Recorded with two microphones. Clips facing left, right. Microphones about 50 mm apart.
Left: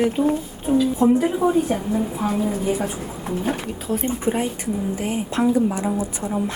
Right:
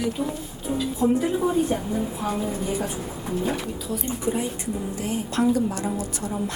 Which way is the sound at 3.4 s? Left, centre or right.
Left.